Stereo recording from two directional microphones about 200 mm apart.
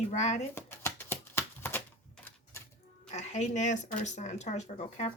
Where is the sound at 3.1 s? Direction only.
35° left (ahead or behind).